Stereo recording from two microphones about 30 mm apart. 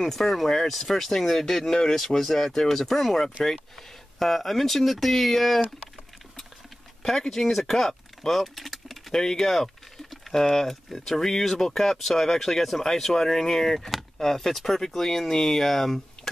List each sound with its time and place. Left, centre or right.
0.0 s speech: centre
7.0 s speech: centre
9.1 s speech: centre